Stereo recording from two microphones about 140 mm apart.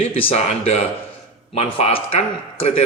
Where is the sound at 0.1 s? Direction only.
45° left (ahead or behind).